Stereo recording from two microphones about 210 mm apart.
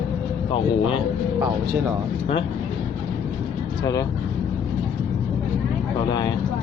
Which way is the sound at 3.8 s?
20° left (ahead or behind).